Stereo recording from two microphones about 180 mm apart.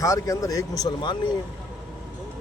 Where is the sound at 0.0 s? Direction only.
15° left (ahead or behind).